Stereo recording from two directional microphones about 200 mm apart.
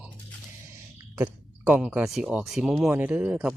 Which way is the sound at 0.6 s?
10° right (ahead or behind).